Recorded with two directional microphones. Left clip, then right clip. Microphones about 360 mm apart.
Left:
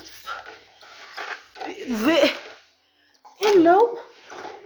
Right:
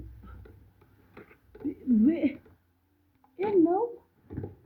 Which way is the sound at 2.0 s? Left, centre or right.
Left.